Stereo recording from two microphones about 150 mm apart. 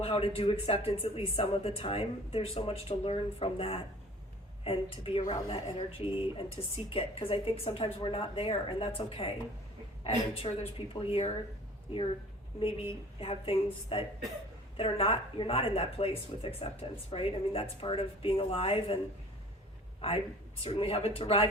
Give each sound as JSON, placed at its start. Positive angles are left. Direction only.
{"t": 0.0, "sound": "speech", "side_deg": 40}
{"t": 13.1, "sound": "speech", "side_deg": 40}
{"t": 20.0, "sound": "speech", "side_deg": 40}